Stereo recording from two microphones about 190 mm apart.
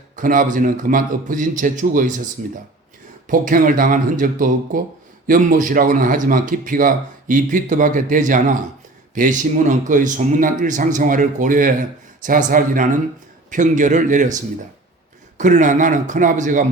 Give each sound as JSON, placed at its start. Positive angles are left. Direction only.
{"t": 0.2, "sound": "speech", "side_deg": -45}
{"t": 3.2, "sound": "a man's voice", "side_deg": -45}